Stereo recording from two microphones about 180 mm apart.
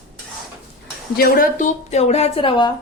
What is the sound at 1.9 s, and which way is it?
Speech, 35° left (ahead or behind).